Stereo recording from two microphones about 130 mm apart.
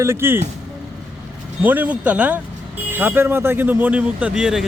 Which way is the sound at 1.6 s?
15° right (ahead or behind).